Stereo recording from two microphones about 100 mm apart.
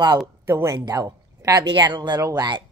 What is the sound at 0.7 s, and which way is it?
A woman's voice, 40° right (ahead or behind).